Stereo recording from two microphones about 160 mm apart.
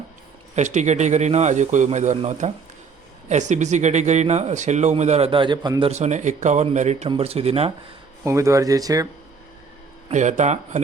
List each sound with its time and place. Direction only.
0.5 s speech: 50° right (ahead or behind); by 5.9 s 30° right (ahead or behind)
5.9 s speech: 45° right (ahead or behind)
8.2 s speech: 20° right (ahead or behind)
10.1 s speech: 50° right (ahead or behind)